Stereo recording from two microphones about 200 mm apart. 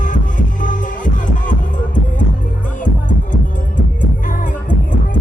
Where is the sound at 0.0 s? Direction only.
40° left (ahead or behind).